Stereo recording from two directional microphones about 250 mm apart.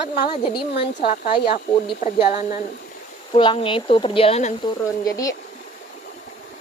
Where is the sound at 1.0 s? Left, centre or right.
Left.